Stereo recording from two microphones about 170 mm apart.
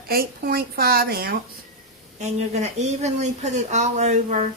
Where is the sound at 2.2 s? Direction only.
40° right (ahead or behind).